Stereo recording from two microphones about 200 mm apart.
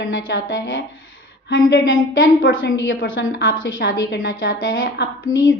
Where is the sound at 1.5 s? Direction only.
50° left (ahead or behind).